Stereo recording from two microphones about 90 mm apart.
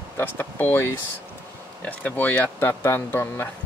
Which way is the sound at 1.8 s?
20° left (ahead or behind).